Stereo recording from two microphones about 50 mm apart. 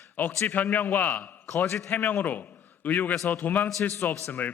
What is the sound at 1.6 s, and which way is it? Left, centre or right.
Speech, left.